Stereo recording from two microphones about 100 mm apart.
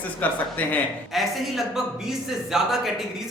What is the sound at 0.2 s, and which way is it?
Speech, 15° left (ahead or behind).